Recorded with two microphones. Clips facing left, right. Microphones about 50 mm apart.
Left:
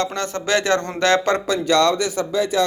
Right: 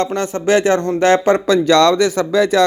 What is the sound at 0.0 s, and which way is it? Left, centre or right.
Speech, right.